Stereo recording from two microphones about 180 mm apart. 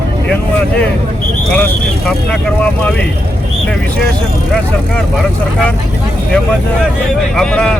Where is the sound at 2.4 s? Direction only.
5° left (ahead or behind).